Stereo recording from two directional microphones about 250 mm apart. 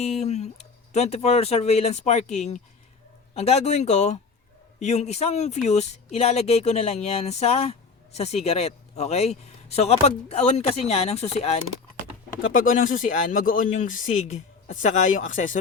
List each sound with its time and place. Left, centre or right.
0.0 s speech: left